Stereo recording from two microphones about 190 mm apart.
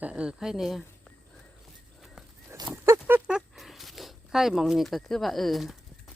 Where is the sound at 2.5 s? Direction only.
20° right (ahead or behind).